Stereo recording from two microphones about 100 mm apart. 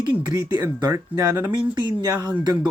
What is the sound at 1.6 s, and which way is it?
Speech, 50° right (ahead or behind).